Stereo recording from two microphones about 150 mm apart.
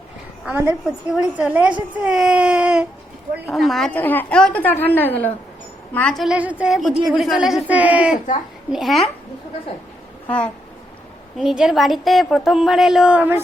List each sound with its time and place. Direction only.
0.5 s a woman's voice: 15° right (ahead or behind)
0.9 s a woman's voice: 5° right (ahead or behind)
10.2 s a woman's voice: 10° left (ahead or behind)
11.3 s a woman's voice: 5° right (ahead or behind)